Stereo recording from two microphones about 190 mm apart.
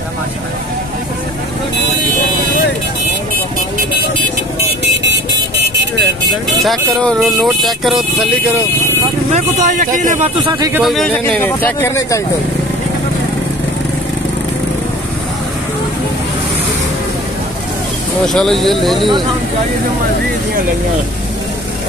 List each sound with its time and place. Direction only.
6.6 s speech: centre (ahead or behind)
9.3 s speech: 40° right (ahead or behind)
10.4 s a man's voice: 25° right (ahead or behind)
10.7 s speech: centre (ahead or behind)
11.1 s speech: 10° left (ahead or behind)
18.2 s speech: centre (ahead or behind)